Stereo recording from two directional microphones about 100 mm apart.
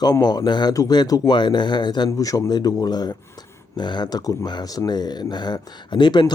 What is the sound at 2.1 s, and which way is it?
Speech, 35° left (ahead or behind).